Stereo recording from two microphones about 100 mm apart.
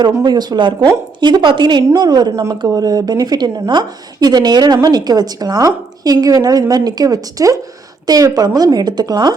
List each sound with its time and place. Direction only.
0.0 s a woman's voice: 45° right (ahead or behind)